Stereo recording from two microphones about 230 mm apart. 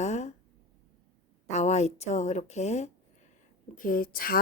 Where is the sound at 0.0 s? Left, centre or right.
Left.